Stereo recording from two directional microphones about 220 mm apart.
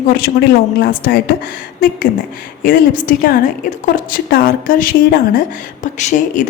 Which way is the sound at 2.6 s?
40° left (ahead or behind).